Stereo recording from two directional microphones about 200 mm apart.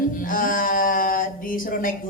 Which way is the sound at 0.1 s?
45° left (ahead or behind).